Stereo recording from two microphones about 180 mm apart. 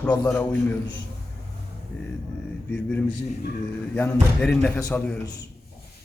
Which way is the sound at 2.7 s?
10° left (ahead or behind).